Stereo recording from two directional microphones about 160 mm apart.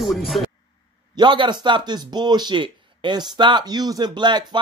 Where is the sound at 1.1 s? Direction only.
30° right (ahead or behind).